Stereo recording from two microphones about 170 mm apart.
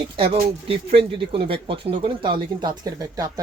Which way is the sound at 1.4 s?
30° right (ahead or behind).